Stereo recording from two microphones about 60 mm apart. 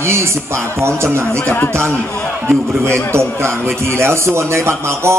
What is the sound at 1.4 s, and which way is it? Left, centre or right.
Speech, left.